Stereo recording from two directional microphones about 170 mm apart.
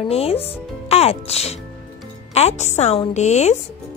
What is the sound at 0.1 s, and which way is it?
Speech, 35° left (ahead or behind).